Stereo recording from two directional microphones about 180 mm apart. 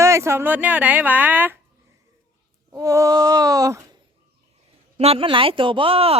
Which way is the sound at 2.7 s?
20° right (ahead or behind).